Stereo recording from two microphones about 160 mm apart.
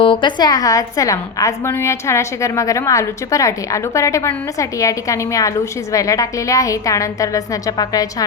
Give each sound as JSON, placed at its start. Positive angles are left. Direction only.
{"t": 0.0, "sound": "a woman's voice", "side_deg": 30}